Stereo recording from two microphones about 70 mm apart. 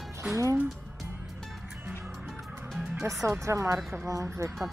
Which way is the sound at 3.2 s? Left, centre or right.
Right.